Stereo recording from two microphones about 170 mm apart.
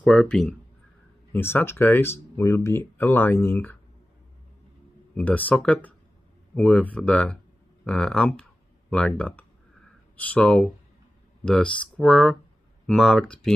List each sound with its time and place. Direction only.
0.0 s speech: 5° left (ahead or behind)
5.1 s speech: 10° left (ahead or behind)